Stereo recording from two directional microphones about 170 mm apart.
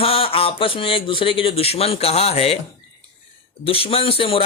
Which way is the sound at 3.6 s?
35° left (ahead or behind).